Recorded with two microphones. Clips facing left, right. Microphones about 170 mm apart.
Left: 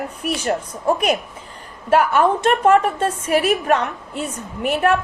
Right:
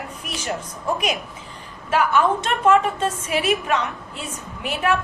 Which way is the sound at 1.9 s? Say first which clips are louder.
Left 3 dB; 55° left (ahead or behind).